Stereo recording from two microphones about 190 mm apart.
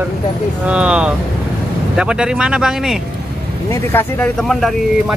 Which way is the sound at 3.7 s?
10° left (ahead or behind).